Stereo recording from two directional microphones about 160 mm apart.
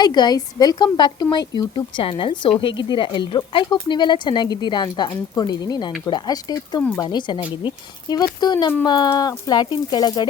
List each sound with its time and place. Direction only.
0.0 s speech: 25° left (ahead or behind)